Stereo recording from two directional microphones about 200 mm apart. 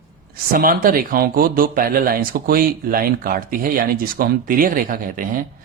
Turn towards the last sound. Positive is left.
turn(degrees=-45)  # may be behind; listen again after turning